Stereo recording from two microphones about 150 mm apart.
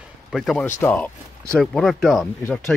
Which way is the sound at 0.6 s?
10° left (ahead or behind).